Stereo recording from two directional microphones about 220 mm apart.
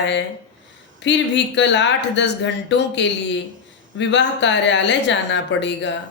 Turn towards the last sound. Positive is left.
turn(degrees=55)  # may be behind; listen again after turning